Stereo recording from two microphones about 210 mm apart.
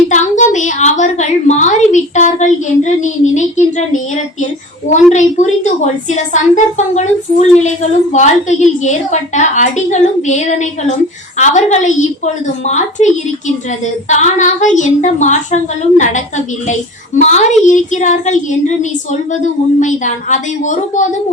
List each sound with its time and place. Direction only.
0.1 s a woman's voice: 35° left (ahead or behind)
17.2 s a woman's voice: 35° left (ahead or behind)
19.8 s a woman's voice: 35° left (ahead or behind)